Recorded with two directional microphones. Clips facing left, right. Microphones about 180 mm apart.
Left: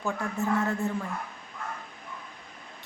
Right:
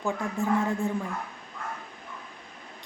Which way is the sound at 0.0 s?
15° right (ahead or behind).